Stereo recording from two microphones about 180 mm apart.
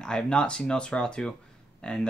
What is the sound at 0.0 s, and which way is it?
Speech, 5° left (ahead or behind).